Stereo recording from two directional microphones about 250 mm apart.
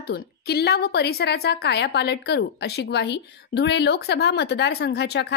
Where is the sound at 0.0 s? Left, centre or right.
Left.